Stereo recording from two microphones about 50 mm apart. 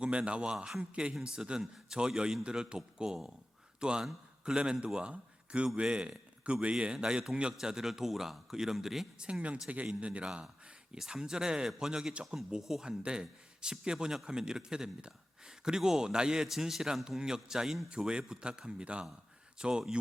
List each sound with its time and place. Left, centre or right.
0.0 s a man's voice: right; by 9.0 s centre
9.1 s speech: centre
9.6 s a man's voice: right
10.9 s speech: centre